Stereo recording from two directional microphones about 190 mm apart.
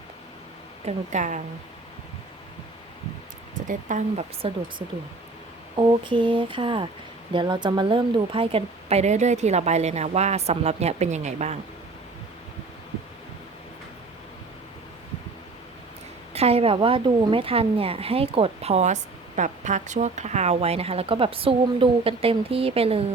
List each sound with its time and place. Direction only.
0.9 s speech: 40° right (ahead or behind)
3.7 s speech: 40° right (ahead or behind)
5.7 s speech: 25° right (ahead or behind)
16.3 s speech: 30° right (ahead or behind)